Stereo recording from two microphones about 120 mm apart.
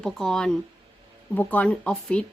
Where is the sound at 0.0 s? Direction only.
5° left (ahead or behind).